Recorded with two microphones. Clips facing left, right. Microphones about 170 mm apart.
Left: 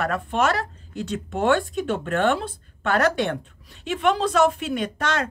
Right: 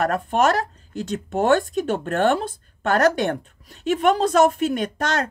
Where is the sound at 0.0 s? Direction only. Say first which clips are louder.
Right 3 dB; 45° right (ahead or behind).